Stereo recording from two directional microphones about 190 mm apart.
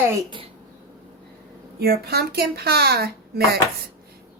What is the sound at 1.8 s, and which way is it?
Speech, 55° right (ahead or behind).